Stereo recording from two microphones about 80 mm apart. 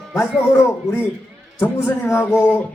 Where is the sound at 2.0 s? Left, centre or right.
Left.